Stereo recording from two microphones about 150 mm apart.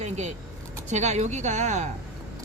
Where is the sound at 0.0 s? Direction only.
50° right (ahead or behind).